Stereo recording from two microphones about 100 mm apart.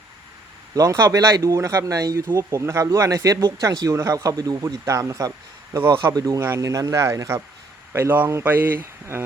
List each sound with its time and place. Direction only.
0.7 s speech: 35° right (ahead or behind)
7.9 s speech: 20° right (ahead or behind)